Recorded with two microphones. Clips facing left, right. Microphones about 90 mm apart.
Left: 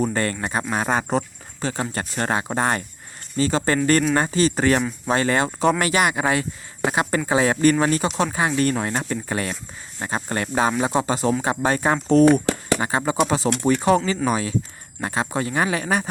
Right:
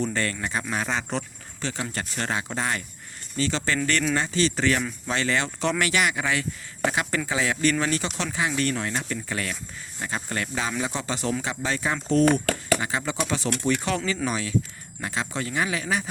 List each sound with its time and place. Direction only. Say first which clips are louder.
0.0 s speech: left 4 dB; 40° left (ahead or behind)
11.4 s speech: left 7 dB; 45° left (ahead or behind)
12.2 s a sound: left 5 dB; 20° left (ahead or behind)
12.8 s speech: left 7 dB; 35° left (ahead or behind)